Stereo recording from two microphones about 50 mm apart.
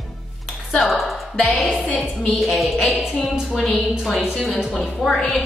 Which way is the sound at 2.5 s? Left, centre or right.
Centre.